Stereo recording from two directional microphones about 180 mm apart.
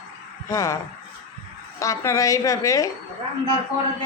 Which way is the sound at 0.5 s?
15° left (ahead or behind).